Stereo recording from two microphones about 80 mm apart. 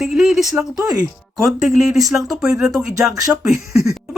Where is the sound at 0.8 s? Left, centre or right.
Right.